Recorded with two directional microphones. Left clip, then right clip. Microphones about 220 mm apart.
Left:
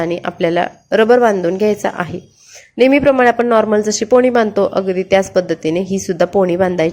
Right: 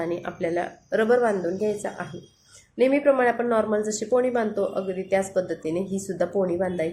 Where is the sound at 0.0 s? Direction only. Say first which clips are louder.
Left 11 dB; 35° left (ahead or behind).